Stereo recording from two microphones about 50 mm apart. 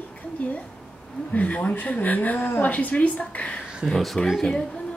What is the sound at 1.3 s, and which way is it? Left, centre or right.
Speech, left.